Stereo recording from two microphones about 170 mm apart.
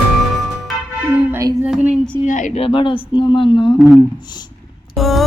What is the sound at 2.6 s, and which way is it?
Speech, 30° left (ahead or behind).